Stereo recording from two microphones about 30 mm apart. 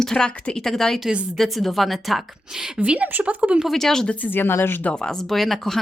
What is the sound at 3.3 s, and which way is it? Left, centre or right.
Speech, right.